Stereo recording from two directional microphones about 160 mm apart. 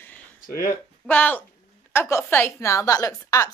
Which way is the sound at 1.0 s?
10° left (ahead or behind).